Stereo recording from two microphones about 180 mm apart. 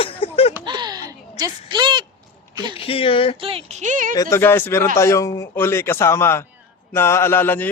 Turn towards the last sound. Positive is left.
turn(degrees=10)  # may be behind; listen again after turning